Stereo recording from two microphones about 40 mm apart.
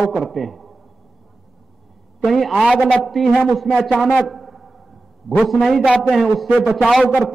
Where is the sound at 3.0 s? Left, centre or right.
Centre.